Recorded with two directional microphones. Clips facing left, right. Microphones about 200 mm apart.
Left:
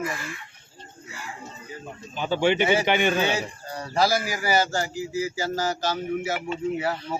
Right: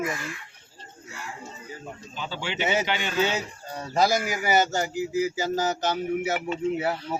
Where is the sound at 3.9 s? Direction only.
20° right (ahead or behind).